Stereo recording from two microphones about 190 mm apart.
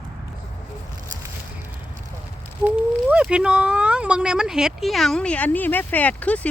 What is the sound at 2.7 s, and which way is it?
Speech, 5° right (ahead or behind).